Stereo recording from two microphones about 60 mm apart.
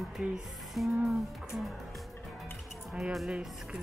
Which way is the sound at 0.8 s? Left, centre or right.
Centre.